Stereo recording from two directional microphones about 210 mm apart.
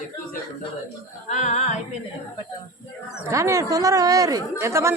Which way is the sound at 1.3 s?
35° left (ahead or behind).